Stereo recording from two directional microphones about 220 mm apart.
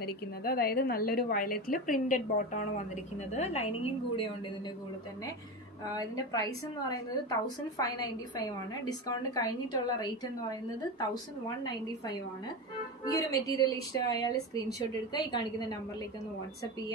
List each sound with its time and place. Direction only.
0.0 s a woman's voice: 45° left (ahead or behind); by 4.3 s 25° left (ahead or behind)
5.9 s a woman's voice: 15° left (ahead or behind)
13.0 s a woman's voice: 15° left (ahead or behind)